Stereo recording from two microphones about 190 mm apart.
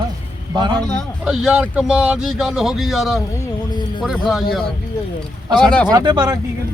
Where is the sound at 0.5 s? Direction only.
20° right (ahead or behind).